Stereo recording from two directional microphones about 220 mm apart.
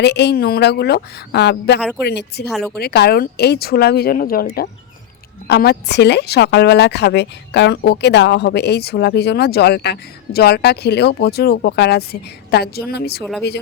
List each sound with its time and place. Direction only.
0.0 s a woman's voice: 50° left (ahead or behind)
2.5 s speech: centre (ahead or behind)
2.7 s a woman's voice: 45° left (ahead or behind)